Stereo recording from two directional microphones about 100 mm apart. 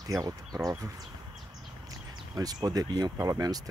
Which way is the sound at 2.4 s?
40° right (ahead or behind).